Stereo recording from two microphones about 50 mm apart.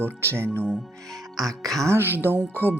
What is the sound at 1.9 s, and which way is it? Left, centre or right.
Speech, right.